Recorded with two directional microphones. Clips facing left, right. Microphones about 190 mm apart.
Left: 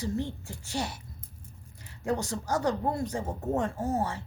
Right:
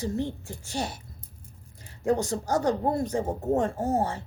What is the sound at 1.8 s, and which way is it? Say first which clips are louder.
A woman's voice: right 5 dB; 45° right (ahead or behind).